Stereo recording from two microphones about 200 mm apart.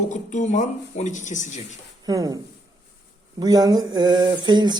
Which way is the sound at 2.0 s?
20° right (ahead or behind).